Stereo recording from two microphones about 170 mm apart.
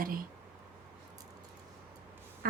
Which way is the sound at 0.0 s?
55° right (ahead or behind).